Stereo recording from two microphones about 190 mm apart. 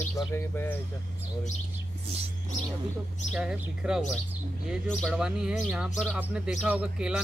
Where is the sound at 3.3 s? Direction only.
5° right (ahead or behind).